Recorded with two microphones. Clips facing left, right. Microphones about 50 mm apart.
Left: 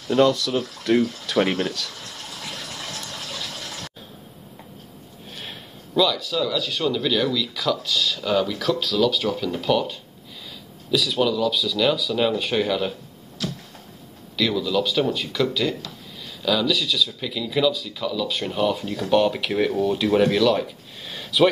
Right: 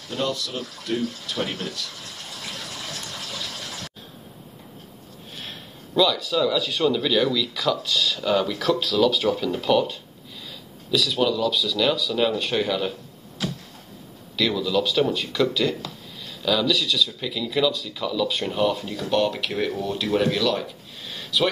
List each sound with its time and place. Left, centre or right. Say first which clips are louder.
0.1 s speech: left 9 dB; left
5.4 s speech: even; centre
13.4 s a sound: right 1 dB; centre
14.3 s speech: even; centre